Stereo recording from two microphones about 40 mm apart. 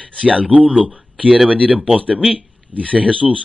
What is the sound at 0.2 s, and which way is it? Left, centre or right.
Speech, right.